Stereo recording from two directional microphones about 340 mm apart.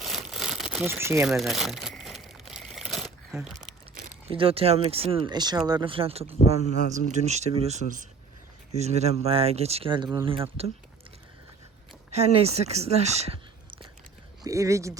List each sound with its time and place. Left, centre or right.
0.0 s crumpling: centre
4.3 s speech: centre
12.1 s speech: centre